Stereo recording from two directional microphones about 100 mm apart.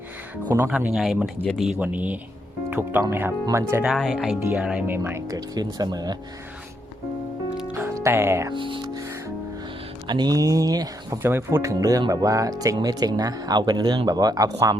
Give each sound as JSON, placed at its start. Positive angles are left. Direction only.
{"t": 0.7, "sound": "speech", "side_deg": -10}
{"t": 1.8, "sound": "speech", "side_deg": -15}
{"t": 3.8, "sound": "speech", "side_deg": 0}
{"t": 4.9, "sound": "speech", "side_deg": -20}
{"t": 5.3, "sound": "speech", "side_deg": -40}
{"t": 8.0, "sound": "speech", "side_deg": -25}
{"t": 8.5, "sound": "speech", "side_deg": -55}
{"t": 10.1, "sound": "speech", "side_deg": -45}
{"t": 11.2, "sound": "speech", "side_deg": -25}